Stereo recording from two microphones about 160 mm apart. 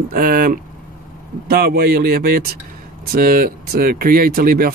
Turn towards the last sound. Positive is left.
turn(degrees=-70)  # may be behind; listen again after turning